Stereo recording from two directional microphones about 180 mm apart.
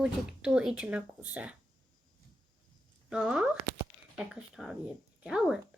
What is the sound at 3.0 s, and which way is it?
Speech, 5° right (ahead or behind).